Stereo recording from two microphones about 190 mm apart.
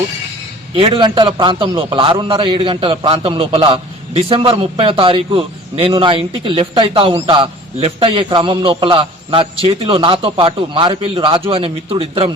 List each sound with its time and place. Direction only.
0.8 s a man's voice: 25° right (ahead or behind)